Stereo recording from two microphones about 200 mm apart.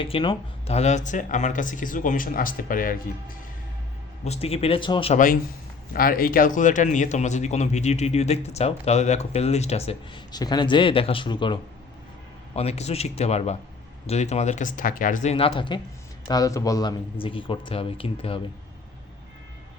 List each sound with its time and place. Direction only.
0.0 s a man's voice: 25° left (ahead or behind); by 3.3 s 45° left (ahead or behind)
4.2 s speech: 30° left (ahead or behind)
5.1 s a man's voice: 45° left (ahead or behind); by 18.3 s 25° left (ahead or behind)